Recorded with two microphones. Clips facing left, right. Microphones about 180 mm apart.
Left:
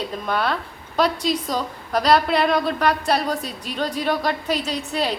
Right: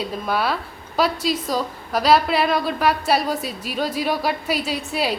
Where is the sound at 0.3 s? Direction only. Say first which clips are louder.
Even; 5° right (ahead or behind).